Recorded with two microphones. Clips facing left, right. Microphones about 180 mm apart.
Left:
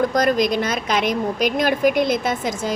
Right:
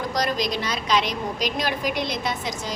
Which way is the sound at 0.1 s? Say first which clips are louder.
Left 7 dB; 55° left (ahead or behind).